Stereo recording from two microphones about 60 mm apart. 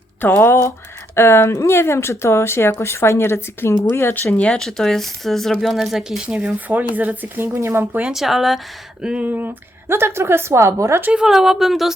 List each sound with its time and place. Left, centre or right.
0.2 s speech: left
4.1 s speech: left
4.4 s speech: centre
4.6 s speech: centre
6.7 s speech: right
7.3 s a woman's voice: right
8.1 s speech: centre
9.0 s speech: centre
9.2 s speech: right
9.9 s a woman's voice: right
11.1 s speech: centre